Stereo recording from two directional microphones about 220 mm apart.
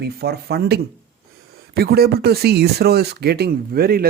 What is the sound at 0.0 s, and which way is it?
Speech, 45° right (ahead or behind).